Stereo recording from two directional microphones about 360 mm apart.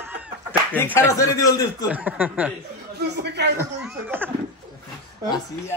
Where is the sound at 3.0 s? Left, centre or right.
Right.